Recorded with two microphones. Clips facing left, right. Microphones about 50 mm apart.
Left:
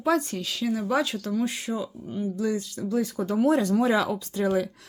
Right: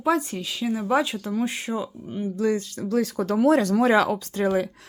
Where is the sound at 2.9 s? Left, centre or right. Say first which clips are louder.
Right 3 dB; right.